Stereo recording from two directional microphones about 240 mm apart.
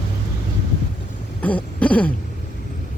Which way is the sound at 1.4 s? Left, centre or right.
Centre.